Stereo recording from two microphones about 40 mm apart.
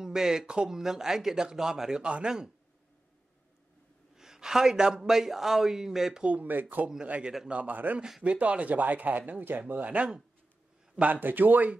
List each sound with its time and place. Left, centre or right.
0.0 s a man's voice: centre
2.0 s speech: right
4.1 s a man's voice: centre
6.4 s speech: right
8.2 s speech: right
9.9 s speech: right
11.0 s speech: right